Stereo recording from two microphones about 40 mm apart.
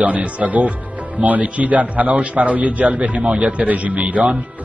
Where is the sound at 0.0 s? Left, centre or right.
Right.